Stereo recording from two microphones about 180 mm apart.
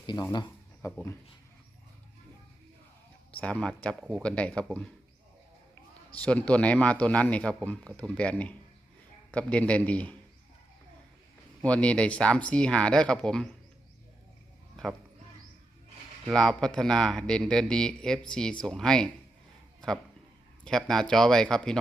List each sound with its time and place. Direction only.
0.0 s a sound: 25° left (ahead or behind)
0.9 s a man's voice: 15° left (ahead or behind)
3.3 s a man's voice: 5° left (ahead or behind)
6.1 s a man's voice: 5° left (ahead or behind)
11.6 s a man's voice: 5° left (ahead or behind)
16.2 s a man's voice: centre (ahead or behind)
20.7 s a man's voice: 5° left (ahead or behind)